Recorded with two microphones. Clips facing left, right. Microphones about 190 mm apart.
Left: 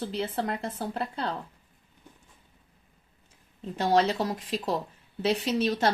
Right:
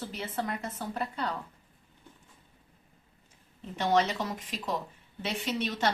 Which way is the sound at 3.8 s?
35° left (ahead or behind).